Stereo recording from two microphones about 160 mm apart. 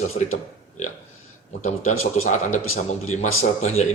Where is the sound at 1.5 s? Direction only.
50° left (ahead or behind).